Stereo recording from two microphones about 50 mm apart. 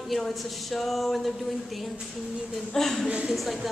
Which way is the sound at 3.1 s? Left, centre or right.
Centre.